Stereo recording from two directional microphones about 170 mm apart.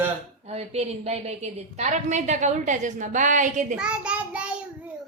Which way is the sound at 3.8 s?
5° right (ahead or behind).